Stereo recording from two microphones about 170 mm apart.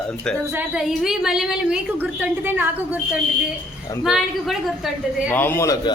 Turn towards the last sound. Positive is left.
turn(degrees=20)  # may be behind; listen again after turning